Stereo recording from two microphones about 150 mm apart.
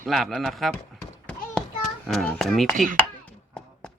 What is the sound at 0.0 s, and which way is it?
Speech, centre (ahead or behind).